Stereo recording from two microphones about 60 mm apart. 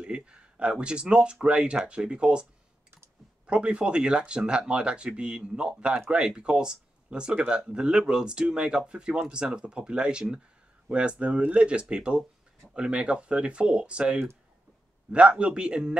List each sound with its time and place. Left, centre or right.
0.0 s speech: centre
3.4 s speech: centre